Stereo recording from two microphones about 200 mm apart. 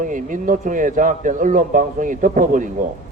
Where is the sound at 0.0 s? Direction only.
40° right (ahead or behind).